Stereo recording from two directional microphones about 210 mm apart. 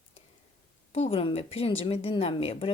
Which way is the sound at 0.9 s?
30° left (ahead or behind).